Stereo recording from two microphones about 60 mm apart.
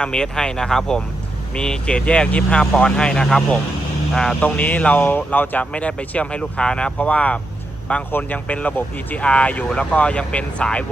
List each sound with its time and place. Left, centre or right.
0.0 s speech: centre
4.4 s speech: left